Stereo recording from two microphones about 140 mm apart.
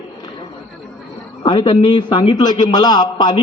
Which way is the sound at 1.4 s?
30° left (ahead or behind).